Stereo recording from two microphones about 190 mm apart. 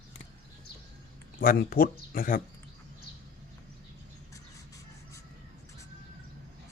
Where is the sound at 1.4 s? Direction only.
50° left (ahead or behind).